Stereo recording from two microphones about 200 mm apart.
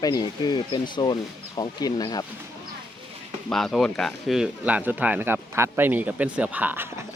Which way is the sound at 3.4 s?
Centre (ahead or behind).